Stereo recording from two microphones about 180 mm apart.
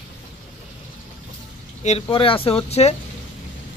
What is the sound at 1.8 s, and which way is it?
Speech, 35° left (ahead or behind).